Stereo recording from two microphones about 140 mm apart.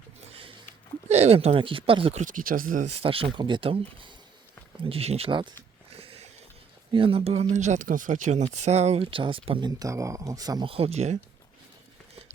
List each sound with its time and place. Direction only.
0.2 s a sound: 45° right (ahead or behind)
1.0 s speech: 50° right (ahead or behind)
2.2 s speech: 80° right
3.0 s speech: 40° right (ahead or behind)
6.0 s a sound: 45° right (ahead or behind)
6.9 s speech: 40° right (ahead or behind)
7.5 s speech: 60° right (ahead or behind); by 10.7 s 25° right (ahead or behind)
10.7 s speech: 45° right (ahead or behind)